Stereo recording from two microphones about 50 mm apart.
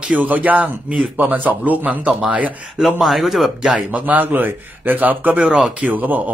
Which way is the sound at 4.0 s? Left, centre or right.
Right.